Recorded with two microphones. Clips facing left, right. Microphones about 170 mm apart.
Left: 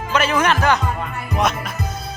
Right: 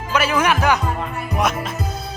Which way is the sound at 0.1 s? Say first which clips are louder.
Even; 10° right (ahead or behind).